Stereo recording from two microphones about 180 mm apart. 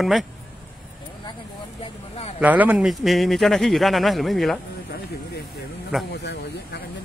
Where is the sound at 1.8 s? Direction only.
35° left (ahead or behind).